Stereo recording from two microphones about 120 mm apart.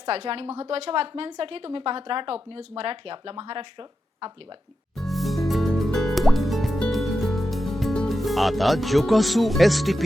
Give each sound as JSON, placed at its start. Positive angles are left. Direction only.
{"t": 0.0, "sound": "speech", "side_deg": -55}
{"t": 4.9, "sound": "music", "side_deg": 0}